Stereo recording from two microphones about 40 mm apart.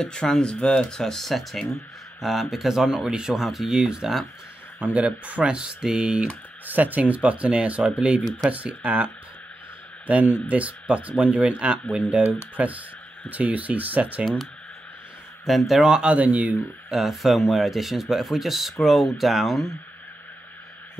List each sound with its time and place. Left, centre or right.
0.0 s speech: centre
2.7 s speech: centre
3.4 s speech: centre
4.7 s speech: right
5.5 s speech: right
6.6 s speech: right
12.3 s speech: right
15.4 s speech: centre
16.0 s speech: right
16.9 s speech: centre